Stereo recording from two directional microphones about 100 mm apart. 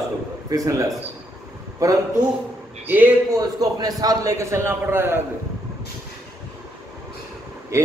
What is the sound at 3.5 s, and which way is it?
A man's voice, 40° right (ahead or behind).